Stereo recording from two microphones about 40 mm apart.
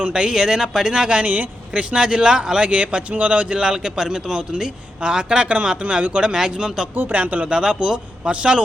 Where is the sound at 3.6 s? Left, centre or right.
Centre.